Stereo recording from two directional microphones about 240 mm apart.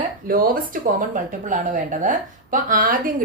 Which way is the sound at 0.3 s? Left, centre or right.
Right.